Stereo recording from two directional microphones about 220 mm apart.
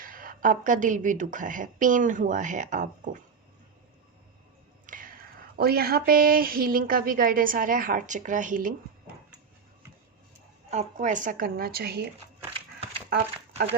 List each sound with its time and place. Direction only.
0.0 s a woman's voice: 40° right (ahead or behind)
4.9 s whispering: 40° right (ahead or behind)
5.5 s a woman's voice: 45° right (ahead or behind)
10.7 s a woman's voice: 35° right (ahead or behind)